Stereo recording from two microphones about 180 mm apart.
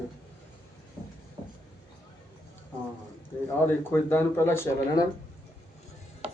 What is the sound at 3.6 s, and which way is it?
Speech, 10° left (ahead or behind).